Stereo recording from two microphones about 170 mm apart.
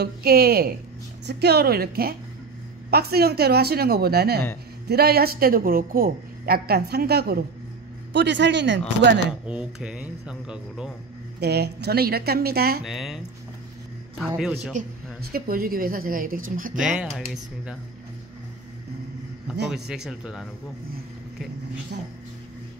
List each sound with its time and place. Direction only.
0.0 s a woman's voice: 65° right (ahead or behind)
8.1 s speech: 90° right
9.5 s speech: 5° right (ahead or behind)
11.3 s speech: 75° right (ahead or behind)
12.8 s speech: centre (ahead or behind)
15.3 s a woman's voice: 60° right (ahead or behind)
16.8 s speech: 5° right (ahead or behind)
19.7 s speech: 5° right (ahead or behind)